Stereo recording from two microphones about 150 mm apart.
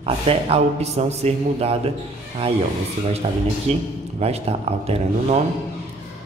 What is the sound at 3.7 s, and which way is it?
Speech, 45° right (ahead or behind).